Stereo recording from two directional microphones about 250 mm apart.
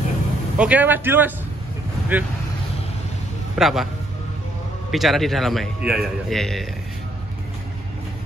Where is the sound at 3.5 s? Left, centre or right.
Centre.